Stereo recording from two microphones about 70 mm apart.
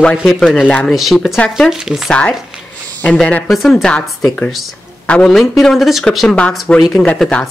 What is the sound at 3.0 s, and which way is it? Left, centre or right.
Speech, centre.